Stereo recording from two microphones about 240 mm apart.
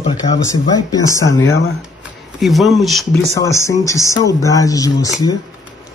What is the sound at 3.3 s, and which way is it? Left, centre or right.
Speech, centre.